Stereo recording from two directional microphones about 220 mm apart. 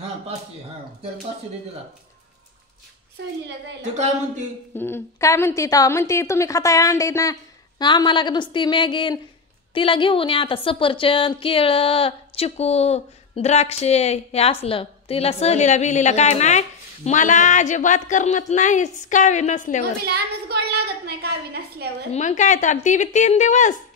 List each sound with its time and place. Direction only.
3.9 s speech: 30° right (ahead or behind)
4.7 s a woman's voice: 10° left (ahead or behind); by 19.8 s 35° left (ahead or behind)
20.1 s a woman's voice: 50° right (ahead or behind)
22.1 s a woman's voice: 30° left (ahead or behind)